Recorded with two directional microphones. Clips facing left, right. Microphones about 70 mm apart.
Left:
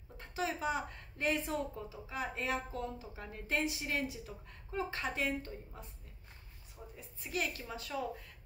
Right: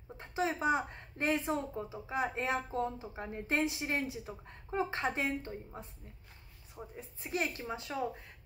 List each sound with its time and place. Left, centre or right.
0.2 s a woman's voice: right
7.0 s a woman's voice: right